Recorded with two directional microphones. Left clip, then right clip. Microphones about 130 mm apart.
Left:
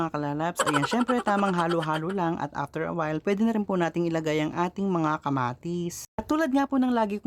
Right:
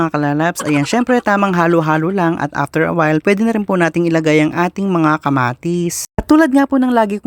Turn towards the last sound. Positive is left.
turn(degrees=-45)  # may be behind; listen again after turning